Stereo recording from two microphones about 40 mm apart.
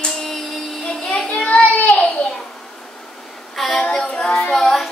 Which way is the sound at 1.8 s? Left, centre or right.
Left.